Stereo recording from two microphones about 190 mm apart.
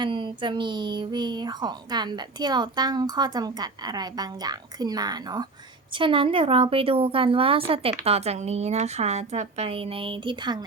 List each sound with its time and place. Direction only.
0.0 s a woman's voice: 25° right (ahead or behind)